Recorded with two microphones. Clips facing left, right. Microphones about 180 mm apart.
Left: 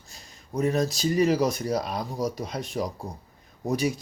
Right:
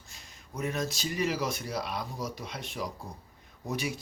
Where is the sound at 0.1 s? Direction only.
35° left (ahead or behind).